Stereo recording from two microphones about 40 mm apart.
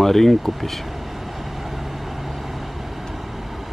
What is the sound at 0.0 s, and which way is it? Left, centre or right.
Vehicle, centre.